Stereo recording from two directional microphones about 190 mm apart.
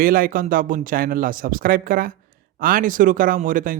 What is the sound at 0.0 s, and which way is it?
Speech, 50° right (ahead or behind).